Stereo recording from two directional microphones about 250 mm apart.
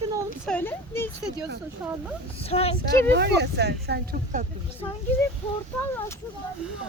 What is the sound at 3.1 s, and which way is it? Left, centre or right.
Speech, right.